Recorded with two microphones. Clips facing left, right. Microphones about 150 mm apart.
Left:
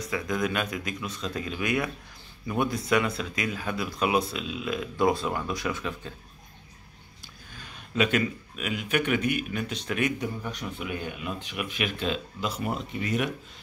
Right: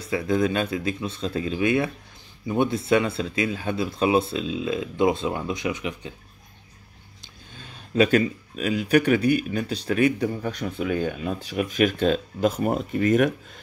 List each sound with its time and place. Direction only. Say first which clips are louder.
0.0 s speech: right 6 dB; 30° right (ahead or behind)
7.5 s speech: right 7 dB; 30° right (ahead or behind)
10.2 s speech: right 7 dB; 60° right (ahead or behind)
10.8 s speech: right 12 dB; 35° right (ahead or behind)